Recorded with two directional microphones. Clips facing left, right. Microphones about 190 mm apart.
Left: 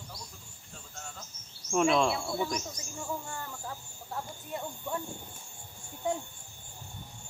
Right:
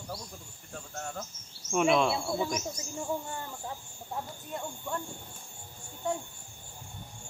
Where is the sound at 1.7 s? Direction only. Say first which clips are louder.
Even; 5° right (ahead or behind).